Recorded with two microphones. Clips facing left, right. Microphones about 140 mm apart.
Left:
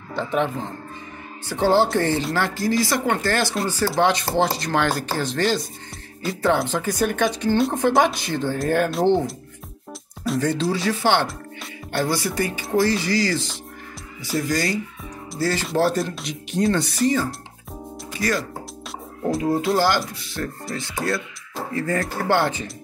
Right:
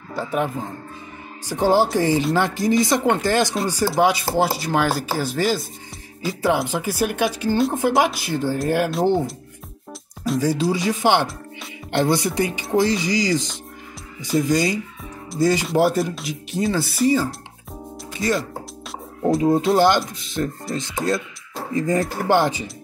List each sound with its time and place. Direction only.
0.1 s speech: 10° right (ahead or behind)
14.5 s speech: 20° right (ahead or behind)
18.2 s speech: 25° right (ahead or behind)
19.7 s speech: 20° right (ahead or behind)